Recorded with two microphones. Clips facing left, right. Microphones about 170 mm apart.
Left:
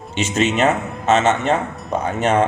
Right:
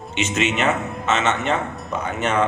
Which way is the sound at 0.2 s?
35° left (ahead or behind).